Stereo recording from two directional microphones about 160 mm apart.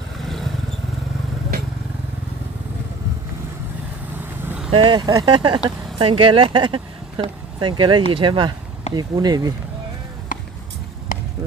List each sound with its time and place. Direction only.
0.2 s vehicle: centre (ahead or behind)
4.6 s speech: 35° right (ahead or behind)